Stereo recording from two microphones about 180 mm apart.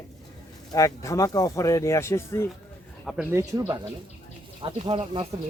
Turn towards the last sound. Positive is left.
turn(degrees=-30)  # may be behind; listen again after turning